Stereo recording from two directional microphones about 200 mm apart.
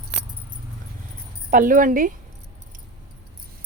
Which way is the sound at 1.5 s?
45° right (ahead or behind).